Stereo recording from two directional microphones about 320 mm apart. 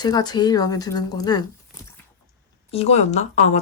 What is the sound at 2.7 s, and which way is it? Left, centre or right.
Speech, centre.